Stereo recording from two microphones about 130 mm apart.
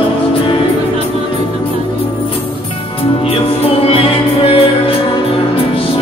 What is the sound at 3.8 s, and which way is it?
Music, 45° left (ahead or behind).